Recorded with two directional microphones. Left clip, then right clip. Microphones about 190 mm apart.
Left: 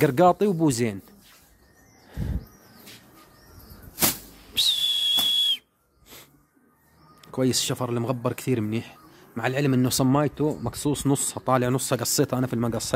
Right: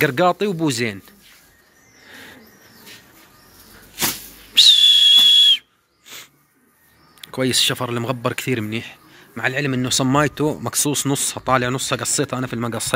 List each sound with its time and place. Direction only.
0.0 s speech: 15° left (ahead or behind)
4.6 s whistle: 10° left (ahead or behind)
6.1 s bird: 10° left (ahead or behind)
7.2 s speech: 10° left (ahead or behind)
10.0 s speech: centre (ahead or behind)